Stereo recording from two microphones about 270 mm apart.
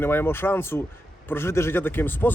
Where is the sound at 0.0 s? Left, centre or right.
Centre.